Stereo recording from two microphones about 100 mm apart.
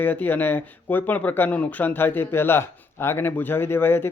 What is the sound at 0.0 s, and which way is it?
Speech, 20° left (ahead or behind).